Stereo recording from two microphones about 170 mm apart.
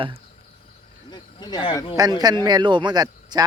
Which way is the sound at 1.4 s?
25° left (ahead or behind).